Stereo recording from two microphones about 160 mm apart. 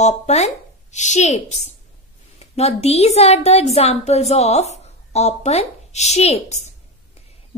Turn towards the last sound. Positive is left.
turn(degrees=45)  # may be behind; listen again after turning